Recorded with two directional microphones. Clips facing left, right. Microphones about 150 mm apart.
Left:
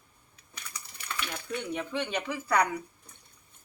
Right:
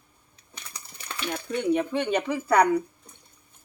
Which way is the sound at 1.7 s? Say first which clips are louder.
Right 9 dB; 50° right (ahead or behind).